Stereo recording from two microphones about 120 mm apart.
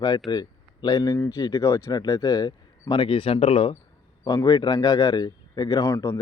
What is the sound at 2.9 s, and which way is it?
Speech, 45° left (ahead or behind).